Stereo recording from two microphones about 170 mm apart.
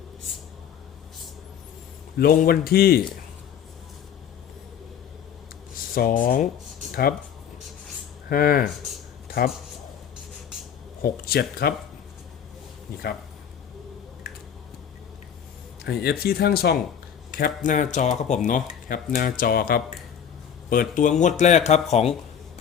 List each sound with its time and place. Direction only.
2.1 s speech: 60° left (ahead or behind)
5.7 s speech: 60° left (ahead or behind)
8.3 s speech: 60° left (ahead or behind)
11.0 s speech: 65° left (ahead or behind)
15.8 s speech: 65° left (ahead or behind)
17.3 s speech: 55° left (ahead or behind)